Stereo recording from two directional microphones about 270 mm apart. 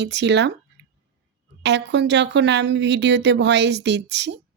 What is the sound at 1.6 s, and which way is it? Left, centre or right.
A woman's voice, right.